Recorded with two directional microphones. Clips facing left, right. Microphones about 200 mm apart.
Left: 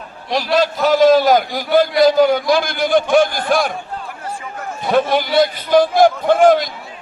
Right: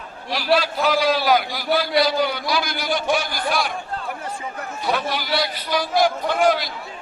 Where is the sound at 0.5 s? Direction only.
45° left (ahead or behind).